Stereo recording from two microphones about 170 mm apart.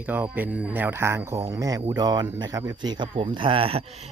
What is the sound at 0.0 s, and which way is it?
A man's voice, 10° right (ahead or behind).